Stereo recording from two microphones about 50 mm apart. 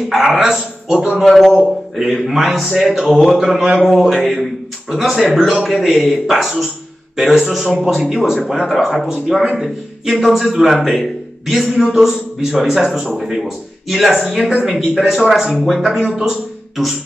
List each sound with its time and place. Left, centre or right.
0.1 s a man's voice: centre
0.9 s speech: centre
1.2 s a man's voice: centre